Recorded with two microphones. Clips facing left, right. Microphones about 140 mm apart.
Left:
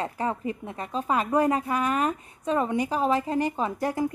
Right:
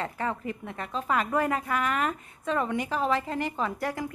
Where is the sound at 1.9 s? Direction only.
30° left (ahead or behind).